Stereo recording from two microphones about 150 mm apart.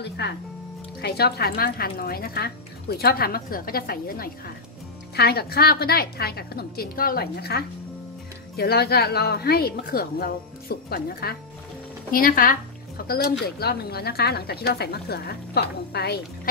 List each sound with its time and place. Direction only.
1.0 s a woman's voice: 90° left
5.1 s speech: 90° left
12.1 s speech: 70° left (ahead or behind); by 16.2 s 90° left